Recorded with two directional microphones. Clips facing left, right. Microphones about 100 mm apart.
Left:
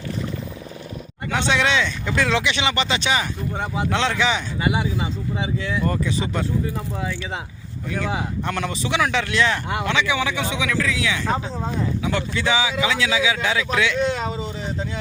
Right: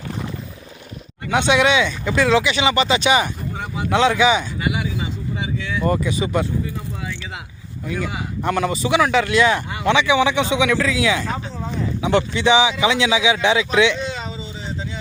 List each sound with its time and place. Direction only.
1.3 s speech: 15° right (ahead or behind)
4.6 s speech: 30° left (ahead or behind)
5.8 s speech: 10° right (ahead or behind)
7.9 s a man's voice: 5° right (ahead or behind)
14.1 s a sound: 50° left (ahead or behind)